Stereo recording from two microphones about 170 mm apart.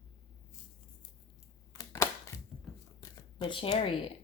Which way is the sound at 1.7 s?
15° left (ahead or behind).